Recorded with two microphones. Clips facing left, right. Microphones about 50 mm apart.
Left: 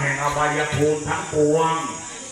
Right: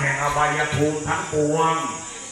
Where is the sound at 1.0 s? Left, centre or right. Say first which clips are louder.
Left 1 dB; right.